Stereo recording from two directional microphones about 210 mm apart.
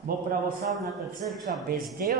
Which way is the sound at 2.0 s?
45° right (ahead or behind).